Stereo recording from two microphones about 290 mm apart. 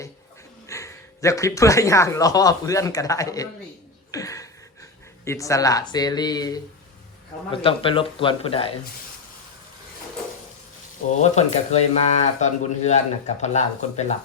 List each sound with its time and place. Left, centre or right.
0.7 s speech: centre
11.2 s speech: left